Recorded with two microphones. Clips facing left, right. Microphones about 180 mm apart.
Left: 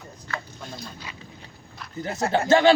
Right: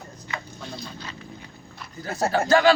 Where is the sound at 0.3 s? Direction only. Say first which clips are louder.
Left 1 dB; 20° right (ahead or behind).